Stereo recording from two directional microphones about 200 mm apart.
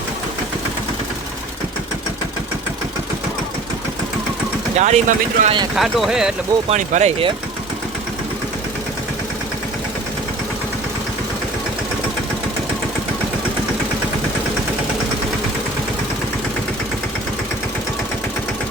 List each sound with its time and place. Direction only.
4.8 s speech: 35° right (ahead or behind)
5.7 s speech: centre (ahead or behind)
6.7 s speech: 35° right (ahead or behind)